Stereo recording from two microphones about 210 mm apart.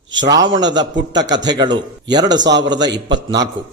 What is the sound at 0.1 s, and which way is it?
A man's voice, 20° right (ahead or behind).